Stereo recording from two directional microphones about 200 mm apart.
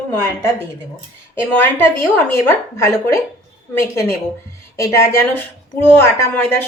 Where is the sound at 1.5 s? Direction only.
10° left (ahead or behind).